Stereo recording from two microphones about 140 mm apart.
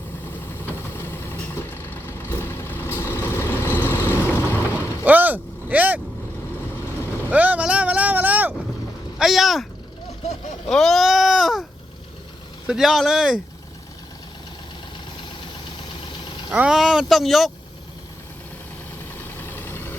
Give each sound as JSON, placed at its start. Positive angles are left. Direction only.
{"t": 0.5, "sound": "vehicle", "side_deg": 15}
{"t": 5.0, "sound": "vehicle", "side_deg": -10}
{"t": 7.3, "sound": "vehicle", "side_deg": -10}
{"t": 9.1, "sound": "a sound", "side_deg": 0}
{"t": 10.7, "sound": "sheep", "side_deg": 0}
{"t": 12.6, "sound": "speech", "side_deg": -5}
{"t": 16.6, "sound": "speech", "side_deg": -5}
{"t": 19.1, "sound": "vehicle", "side_deg": 15}